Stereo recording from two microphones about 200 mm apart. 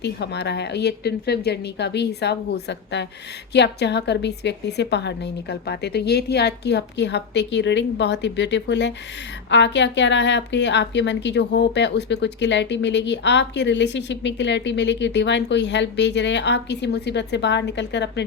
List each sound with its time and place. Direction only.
0.0 s a woman's voice: 60° left (ahead or behind)